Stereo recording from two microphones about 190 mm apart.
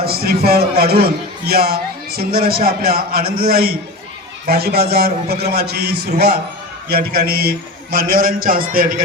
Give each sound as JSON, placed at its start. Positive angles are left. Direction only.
{"t": 0.0, "sound": "a man's voice", "side_deg": -55}